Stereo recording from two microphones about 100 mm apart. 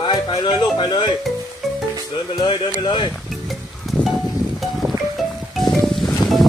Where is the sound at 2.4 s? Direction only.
50° left (ahead or behind).